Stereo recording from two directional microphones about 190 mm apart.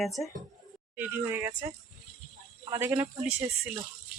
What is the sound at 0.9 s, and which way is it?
Speech, 10° right (ahead or behind).